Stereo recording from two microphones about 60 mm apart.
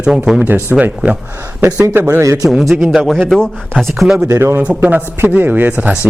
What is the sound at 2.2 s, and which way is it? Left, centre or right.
Speech, right.